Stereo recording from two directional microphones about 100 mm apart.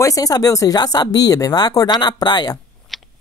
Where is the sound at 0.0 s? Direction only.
35° left (ahead or behind).